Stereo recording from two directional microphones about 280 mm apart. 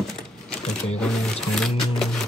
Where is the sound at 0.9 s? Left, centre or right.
Centre.